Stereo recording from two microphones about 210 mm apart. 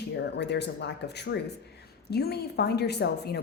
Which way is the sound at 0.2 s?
55° left (ahead or behind).